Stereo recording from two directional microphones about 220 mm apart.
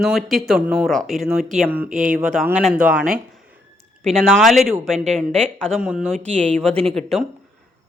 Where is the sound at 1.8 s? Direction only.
35° right (ahead or behind).